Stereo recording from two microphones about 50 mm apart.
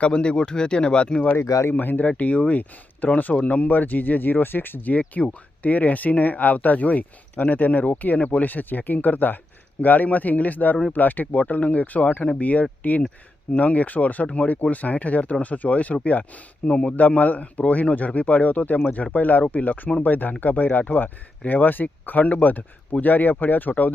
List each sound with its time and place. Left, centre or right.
0.0 s speech: left
1.4 s speech: left
1.7 s speech: left